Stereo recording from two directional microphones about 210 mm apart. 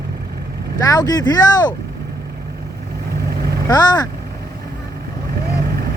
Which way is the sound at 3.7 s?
20° left (ahead or behind).